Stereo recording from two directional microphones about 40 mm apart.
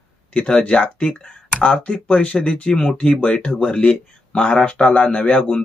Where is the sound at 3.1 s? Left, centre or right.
Left.